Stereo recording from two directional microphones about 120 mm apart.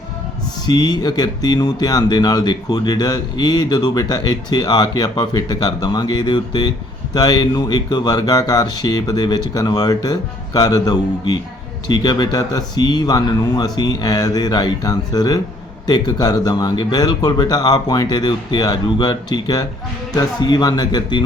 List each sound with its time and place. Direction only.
0.6 s speech: 35° left (ahead or behind)